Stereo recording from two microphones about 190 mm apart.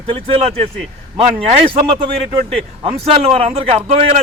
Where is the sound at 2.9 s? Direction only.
30° right (ahead or behind).